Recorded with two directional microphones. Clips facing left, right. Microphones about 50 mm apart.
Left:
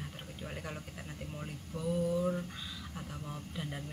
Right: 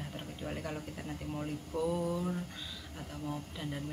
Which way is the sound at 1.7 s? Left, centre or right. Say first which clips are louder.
Right 5 dB; right.